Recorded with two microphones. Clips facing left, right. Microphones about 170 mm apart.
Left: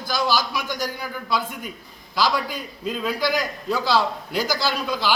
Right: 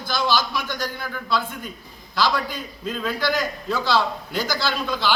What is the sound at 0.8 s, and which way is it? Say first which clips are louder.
A man's voice: left 1 dB; 10° left (ahead or behind).